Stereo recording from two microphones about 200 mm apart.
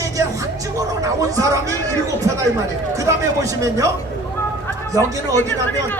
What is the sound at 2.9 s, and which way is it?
Speech, 15° right (ahead or behind).